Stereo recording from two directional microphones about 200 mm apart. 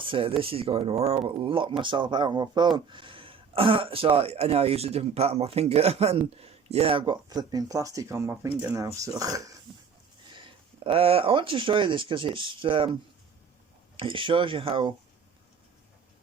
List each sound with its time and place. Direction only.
0.0 s speech: 25° right (ahead or behind)
10.8 s speech: 30° right (ahead or behind)